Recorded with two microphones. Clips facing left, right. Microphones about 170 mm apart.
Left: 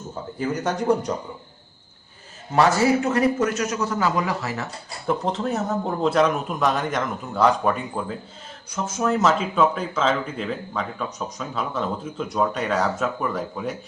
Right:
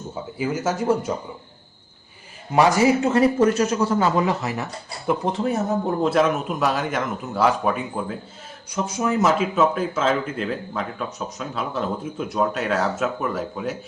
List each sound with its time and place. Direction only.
0.3 s speech: 5° right (ahead or behind)
2.5 s a man's voice: 15° right (ahead or behind)
3.0 s speech: 25° right (ahead or behind); by 13.7 s 5° right (ahead or behind)